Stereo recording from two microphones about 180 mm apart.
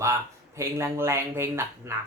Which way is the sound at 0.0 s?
15° right (ahead or behind).